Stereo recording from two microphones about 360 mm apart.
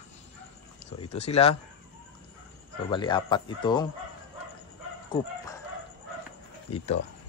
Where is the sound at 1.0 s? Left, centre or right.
Centre.